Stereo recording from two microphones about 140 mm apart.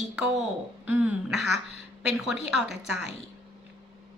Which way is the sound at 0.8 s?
10° right (ahead or behind).